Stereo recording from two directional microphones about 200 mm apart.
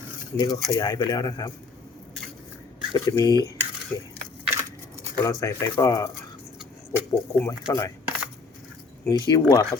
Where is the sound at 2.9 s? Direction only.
20° left (ahead or behind).